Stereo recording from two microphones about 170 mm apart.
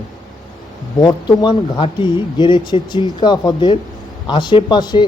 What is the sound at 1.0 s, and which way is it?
Speech, 25° left (ahead or behind).